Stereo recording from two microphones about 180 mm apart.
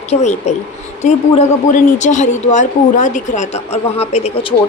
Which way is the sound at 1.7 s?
45° left (ahead or behind).